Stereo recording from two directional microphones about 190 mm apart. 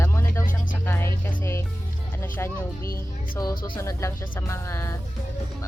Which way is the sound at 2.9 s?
20° left (ahead or behind).